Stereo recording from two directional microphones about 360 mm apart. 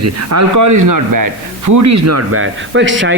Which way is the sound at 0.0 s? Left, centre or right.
Right.